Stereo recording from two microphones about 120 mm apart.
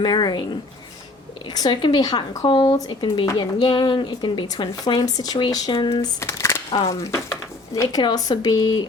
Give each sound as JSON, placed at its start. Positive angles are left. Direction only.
{"t": 0.0, "sound": "speech", "side_deg": 35}
{"t": 1.5, "sound": "speech", "side_deg": 35}
{"t": 2.7, "sound": "speech", "side_deg": 30}
{"t": 3.3, "sound": "speech", "side_deg": 40}
{"t": 6.0, "sound": "a sound", "side_deg": 25}
{"t": 6.8, "sound": "speech", "side_deg": 25}